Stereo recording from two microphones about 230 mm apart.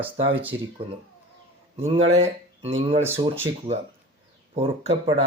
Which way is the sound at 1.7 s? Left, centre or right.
Right.